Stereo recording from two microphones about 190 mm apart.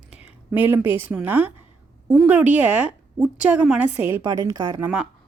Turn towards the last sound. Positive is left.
turn(degrees=-10)  # may be behind; listen again after turning